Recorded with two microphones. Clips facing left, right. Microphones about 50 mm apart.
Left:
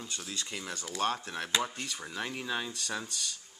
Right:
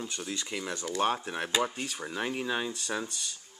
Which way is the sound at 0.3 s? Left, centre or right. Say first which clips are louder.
Right 4 dB; centre.